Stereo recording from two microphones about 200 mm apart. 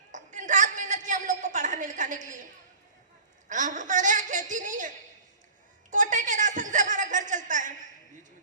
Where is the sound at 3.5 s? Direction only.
40° right (ahead or behind).